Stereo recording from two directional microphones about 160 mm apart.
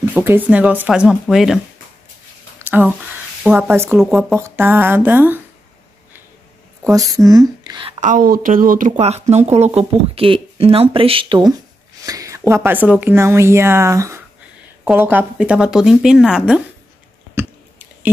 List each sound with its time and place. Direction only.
0.0 s speech: 15° right (ahead or behind)
2.6 s a sound: 15° right (ahead or behind)
3.4 s speech: 15° right (ahead or behind)
4.0 s speech: centre (ahead or behind)
4.4 s speech: 15° right (ahead or behind)
6.8 s a woman's voice: 20° right (ahead or behind)
8.0 s speech: 55° right (ahead or behind); by 16.6 s 5° right (ahead or behind)
17.4 s chewing: 10° right (ahead or behind)